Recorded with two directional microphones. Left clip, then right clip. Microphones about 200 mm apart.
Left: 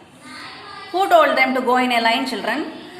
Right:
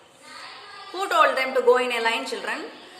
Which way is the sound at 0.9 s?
15° right (ahead or behind).